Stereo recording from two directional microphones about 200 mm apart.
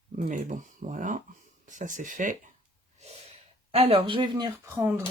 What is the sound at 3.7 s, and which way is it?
Speech, 30° right (ahead or behind).